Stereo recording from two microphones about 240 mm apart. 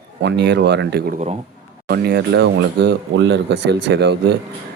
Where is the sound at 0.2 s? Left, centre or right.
Right.